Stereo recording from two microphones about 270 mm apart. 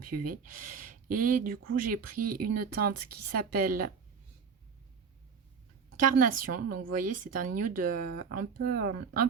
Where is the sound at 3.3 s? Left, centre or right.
Right.